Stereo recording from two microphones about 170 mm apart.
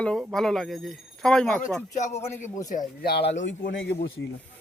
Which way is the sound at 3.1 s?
80° left.